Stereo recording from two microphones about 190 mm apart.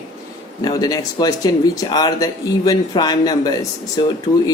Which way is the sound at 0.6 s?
20° left (ahead or behind).